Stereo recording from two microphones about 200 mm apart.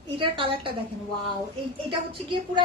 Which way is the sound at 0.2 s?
25° right (ahead or behind).